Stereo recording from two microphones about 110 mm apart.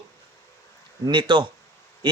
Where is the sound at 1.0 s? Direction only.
45° right (ahead or behind).